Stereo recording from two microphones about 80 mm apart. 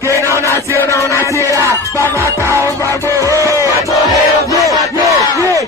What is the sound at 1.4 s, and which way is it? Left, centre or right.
Music, right.